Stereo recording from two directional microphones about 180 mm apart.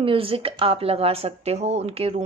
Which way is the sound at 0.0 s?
30° right (ahead or behind).